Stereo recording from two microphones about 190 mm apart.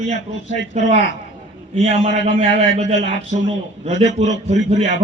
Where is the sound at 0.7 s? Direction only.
40° right (ahead or behind).